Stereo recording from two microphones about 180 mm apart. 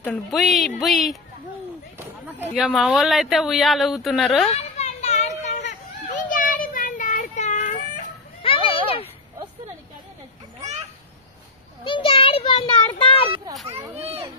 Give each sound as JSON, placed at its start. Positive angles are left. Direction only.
{"t": 0.0, "sound": "speech", "side_deg": 5}
{"t": 2.5, "sound": "speech", "side_deg": -5}
{"t": 4.6, "sound": "a sound", "side_deg": 35}
{"t": 6.1, "sound": "children playing", "side_deg": 45}
{"t": 8.4, "sound": "children playing", "side_deg": 30}
{"t": 11.8, "sound": "a sound", "side_deg": 30}
{"t": 13.9, "sound": "children playing", "side_deg": -35}